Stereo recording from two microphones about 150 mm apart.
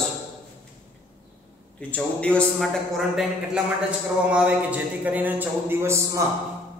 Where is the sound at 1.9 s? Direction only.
10° left (ahead or behind).